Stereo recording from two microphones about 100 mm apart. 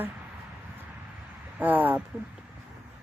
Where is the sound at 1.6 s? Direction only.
20° right (ahead or behind).